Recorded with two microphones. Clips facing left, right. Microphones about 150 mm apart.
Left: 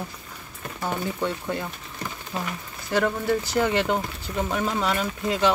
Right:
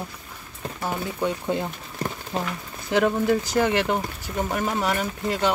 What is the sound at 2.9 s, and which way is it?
Speech, 15° right (ahead or behind).